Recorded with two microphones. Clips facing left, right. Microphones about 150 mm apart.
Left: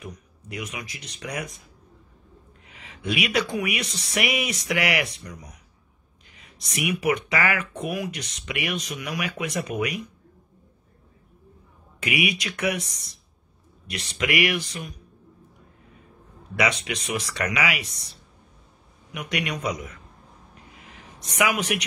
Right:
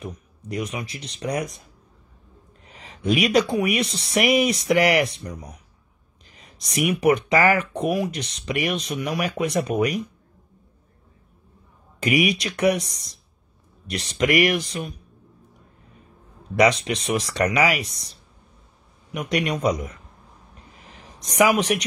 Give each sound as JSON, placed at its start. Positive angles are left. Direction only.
{"t": 0.0, "sound": "speech", "side_deg": -35}
{"t": 2.6, "sound": "speech", "side_deg": -35}
{"t": 12.0, "sound": "speech", "side_deg": -35}
{"t": 16.5, "sound": "speech", "side_deg": -35}
{"t": 19.1, "sound": "speech", "side_deg": -35}
{"t": 20.8, "sound": "a sound", "side_deg": -35}